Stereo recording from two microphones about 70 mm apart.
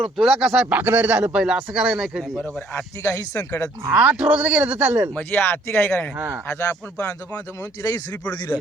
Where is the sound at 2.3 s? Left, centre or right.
Centre.